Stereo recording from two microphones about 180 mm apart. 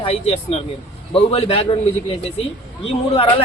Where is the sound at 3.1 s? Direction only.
35° left (ahead or behind).